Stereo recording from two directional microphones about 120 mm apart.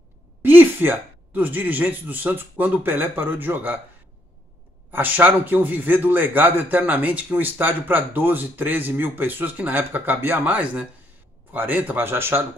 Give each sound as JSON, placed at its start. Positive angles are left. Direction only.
{"t": 0.4, "sound": "a man's voice", "side_deg": -15}
{"t": 4.9, "sound": "a man's voice", "side_deg": -15}